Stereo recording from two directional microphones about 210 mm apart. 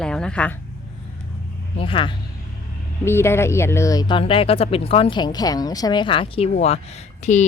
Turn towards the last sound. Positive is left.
turn(degrees=35)  # may be behind; listen again after turning